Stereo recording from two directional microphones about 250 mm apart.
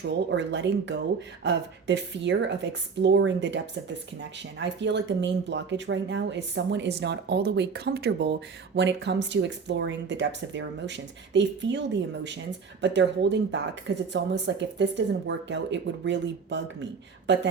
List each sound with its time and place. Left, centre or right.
0.0 s a woman's voice: right